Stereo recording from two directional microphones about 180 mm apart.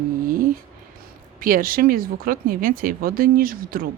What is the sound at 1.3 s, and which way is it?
Speech, 50° right (ahead or behind).